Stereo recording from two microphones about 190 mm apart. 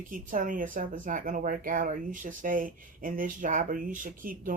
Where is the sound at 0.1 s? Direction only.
45° right (ahead or behind).